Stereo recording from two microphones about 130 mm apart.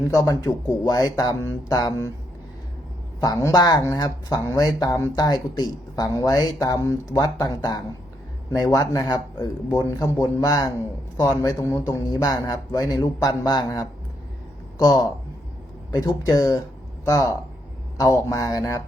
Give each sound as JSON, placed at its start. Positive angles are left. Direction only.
{"t": 0.1, "sound": "speech", "side_deg": 30}
{"t": 3.2, "sound": "speech", "side_deg": 30}